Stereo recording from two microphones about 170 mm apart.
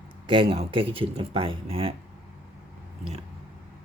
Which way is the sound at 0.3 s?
30° right (ahead or behind).